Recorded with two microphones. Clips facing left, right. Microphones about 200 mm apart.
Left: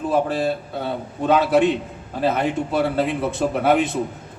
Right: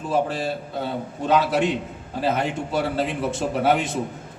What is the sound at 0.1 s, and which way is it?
A man's voice, 55° left (ahead or behind).